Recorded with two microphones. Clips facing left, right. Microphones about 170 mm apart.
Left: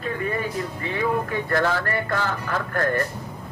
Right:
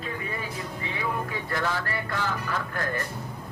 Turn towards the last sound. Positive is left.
turn(degrees=55)  # may be behind; listen again after turning